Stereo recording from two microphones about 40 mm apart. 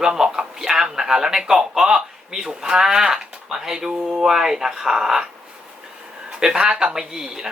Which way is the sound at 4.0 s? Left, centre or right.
Right.